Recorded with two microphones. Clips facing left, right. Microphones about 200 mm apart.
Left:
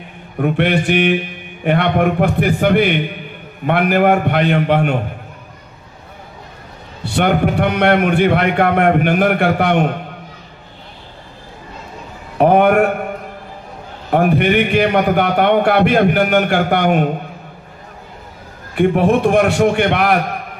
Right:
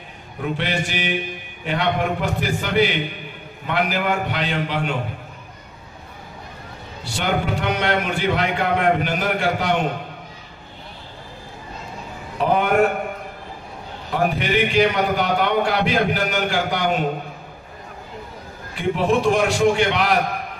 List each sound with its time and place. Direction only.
0.4 s a man's voice: 60° left (ahead or behind)
7.1 s a man's voice: 60° left (ahead or behind)
12.4 s a sound: 60° left (ahead or behind)
14.1 s a man's voice: 60° left (ahead or behind)
18.8 s a man's voice: 60° left (ahead or behind)